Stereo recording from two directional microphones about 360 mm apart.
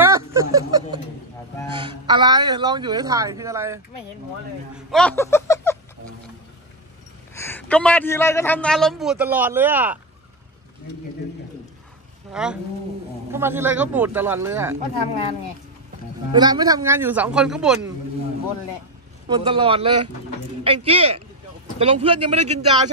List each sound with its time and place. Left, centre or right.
0.0 s speech: centre
7.3 s a man's voice: centre
12.3 s speech: centre
16.3 s speech: centre
19.2 s speech: centre